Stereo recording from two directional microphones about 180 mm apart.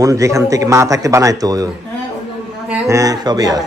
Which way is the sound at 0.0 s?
20° right (ahead or behind).